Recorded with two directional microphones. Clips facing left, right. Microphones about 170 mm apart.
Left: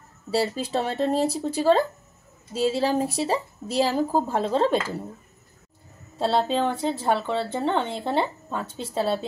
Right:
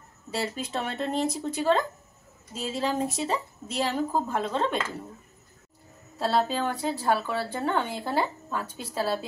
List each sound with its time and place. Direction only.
0.3 s a woman's voice: 35° left (ahead or behind)
6.1 s a woman's voice: 30° left (ahead or behind)